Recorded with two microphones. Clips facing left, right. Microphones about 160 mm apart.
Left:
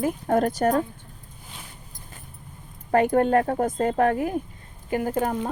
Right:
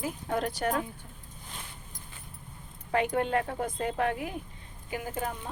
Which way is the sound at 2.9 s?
45° left (ahead or behind).